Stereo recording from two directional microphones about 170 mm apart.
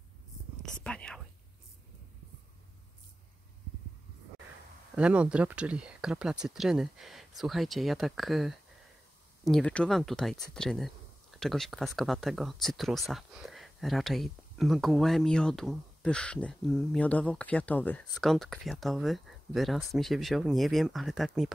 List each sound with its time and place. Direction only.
0.8 s whispering: 5° left (ahead or behind)
4.9 s speech: 5° right (ahead or behind)